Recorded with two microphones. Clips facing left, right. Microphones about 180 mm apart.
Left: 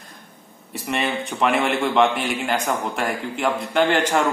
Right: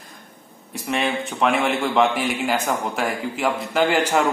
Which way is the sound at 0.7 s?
Centre (ahead or behind).